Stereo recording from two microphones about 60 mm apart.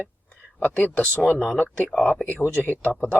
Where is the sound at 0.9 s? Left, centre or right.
Left.